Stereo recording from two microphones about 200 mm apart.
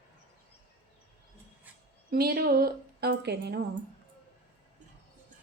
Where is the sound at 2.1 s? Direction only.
50° right (ahead or behind).